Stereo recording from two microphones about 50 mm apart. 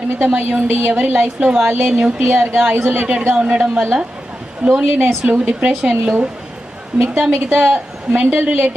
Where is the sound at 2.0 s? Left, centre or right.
Right.